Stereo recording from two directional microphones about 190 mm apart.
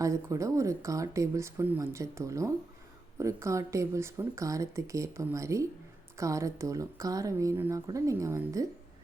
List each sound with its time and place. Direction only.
0.0 s speech: 15° right (ahead or behind)